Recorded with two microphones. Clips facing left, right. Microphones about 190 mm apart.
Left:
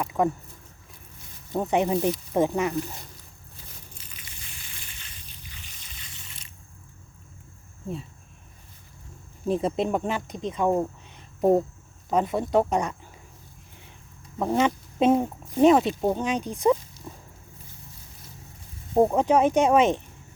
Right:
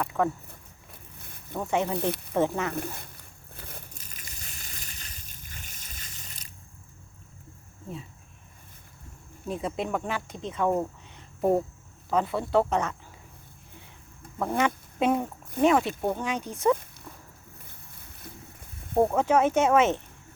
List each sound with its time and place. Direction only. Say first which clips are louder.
0.0 s speech: left 2 dB; 15° left (ahead or behind)
1.5 s speech: left 4 dB; 20° left (ahead or behind)
2.7 s speech: left 3 dB; 55° right (ahead or behind)
3.6 s crushing: right 6 dB; 60° right (ahead or behind)
3.9 s slosh: even; 45° right (ahead or behind)
9.5 s speech: left 6 dB; 30° left (ahead or behind)
14.3 s speech: left 3 dB; 20° left (ahead or behind)
17.1 s a sound: left 4 dB; 20° left (ahead or behind)
18.9 s speech: left 2 dB; 20° left (ahead or behind)